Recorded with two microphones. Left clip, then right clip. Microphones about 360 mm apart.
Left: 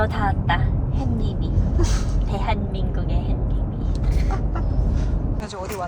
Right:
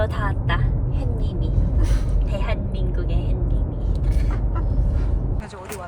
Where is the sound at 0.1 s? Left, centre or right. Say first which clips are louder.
Left 4 dB; centre.